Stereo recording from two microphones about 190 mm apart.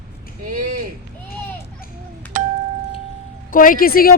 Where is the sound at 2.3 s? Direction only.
45° right (ahead or behind).